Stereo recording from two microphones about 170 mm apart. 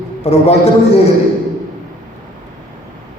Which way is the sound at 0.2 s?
40° left (ahead or behind).